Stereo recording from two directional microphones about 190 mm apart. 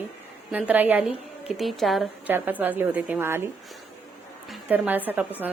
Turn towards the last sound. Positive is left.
turn(degrees=-10)  # may be behind; listen again after turning